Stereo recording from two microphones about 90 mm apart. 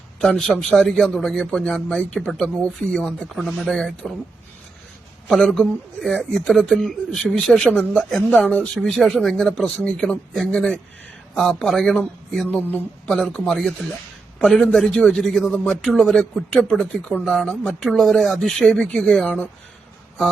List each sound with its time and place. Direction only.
0.2 s a man's voice: 5° left (ahead or behind)
5.3 s a man's voice: 5° left (ahead or behind)
8.3 s a man's voice: 15° left (ahead or behind)
12.5 s speech: 20° left (ahead or behind)
13.1 s a man's voice: 5° left (ahead or behind)